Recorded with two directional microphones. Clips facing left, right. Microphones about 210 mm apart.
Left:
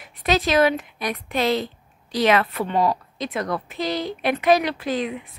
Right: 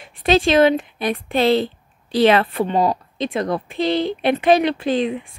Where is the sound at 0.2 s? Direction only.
30° right (ahead or behind).